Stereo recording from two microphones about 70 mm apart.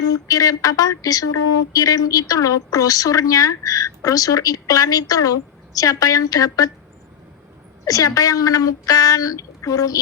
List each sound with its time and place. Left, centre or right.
0.0 s speech: left
7.9 s speech: left